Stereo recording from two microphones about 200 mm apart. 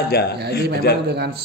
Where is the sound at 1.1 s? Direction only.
55° right (ahead or behind).